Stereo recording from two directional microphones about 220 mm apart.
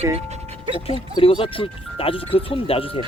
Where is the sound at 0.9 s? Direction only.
25° left (ahead or behind).